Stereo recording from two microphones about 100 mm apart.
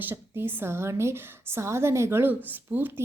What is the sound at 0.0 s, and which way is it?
A woman's voice, 20° right (ahead or behind).